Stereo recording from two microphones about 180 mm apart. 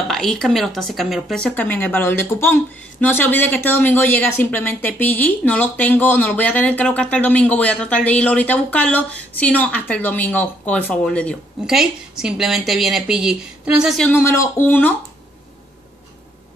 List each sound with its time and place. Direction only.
0.1 s speech: centre (ahead or behind)